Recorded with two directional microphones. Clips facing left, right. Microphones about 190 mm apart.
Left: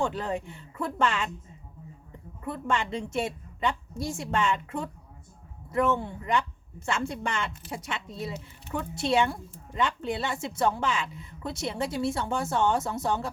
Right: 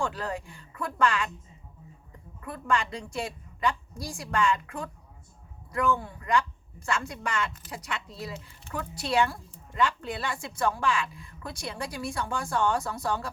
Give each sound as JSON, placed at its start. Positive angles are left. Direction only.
{"t": 0.0, "sound": "speech", "side_deg": 25}
{"t": 2.4, "sound": "speech", "side_deg": 25}